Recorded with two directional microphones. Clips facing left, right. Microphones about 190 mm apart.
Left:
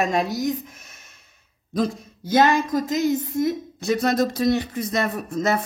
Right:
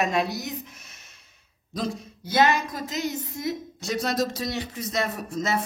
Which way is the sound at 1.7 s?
55° left (ahead or behind).